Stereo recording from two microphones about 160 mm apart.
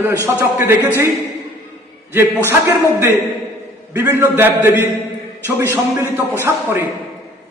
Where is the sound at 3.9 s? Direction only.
15° right (ahead or behind).